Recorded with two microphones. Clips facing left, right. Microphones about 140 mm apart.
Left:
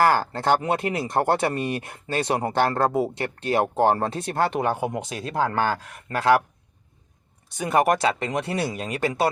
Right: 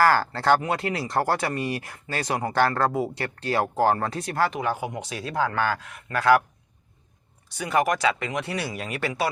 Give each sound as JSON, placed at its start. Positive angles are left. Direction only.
{"t": 0.0, "sound": "speech", "side_deg": 20}
{"t": 4.5, "sound": "speech", "side_deg": 55}
{"t": 5.0, "sound": "speech", "side_deg": 30}
{"t": 7.5, "sound": "speech", "side_deg": 20}
{"t": 8.0, "sound": "speech", "side_deg": 35}
{"t": 9.0, "sound": "speech", "side_deg": 40}